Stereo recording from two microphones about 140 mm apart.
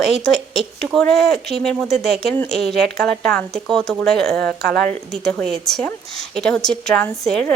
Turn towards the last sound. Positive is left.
turn(degrees=5)  # may be behind; listen again after turning